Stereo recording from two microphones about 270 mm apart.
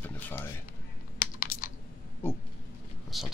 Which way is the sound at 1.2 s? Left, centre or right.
Left.